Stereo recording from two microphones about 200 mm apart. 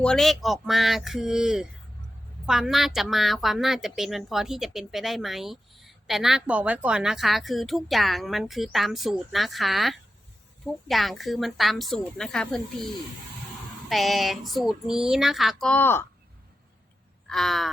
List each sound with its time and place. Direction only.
0.0 s a woman's voice: 5° left (ahead or behind)
13.9 s a woman's voice: centre (ahead or behind)
17.2 s a sound: centre (ahead or behind)